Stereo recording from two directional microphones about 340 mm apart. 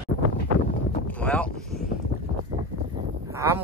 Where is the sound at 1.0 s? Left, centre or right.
Centre.